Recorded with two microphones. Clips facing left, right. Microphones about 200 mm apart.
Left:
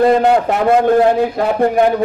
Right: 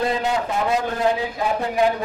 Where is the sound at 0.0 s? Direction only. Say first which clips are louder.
Left 11 dB; 55° left (ahead or behind).